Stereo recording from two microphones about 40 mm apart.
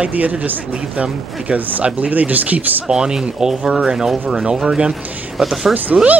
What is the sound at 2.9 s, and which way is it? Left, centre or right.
Speech, centre.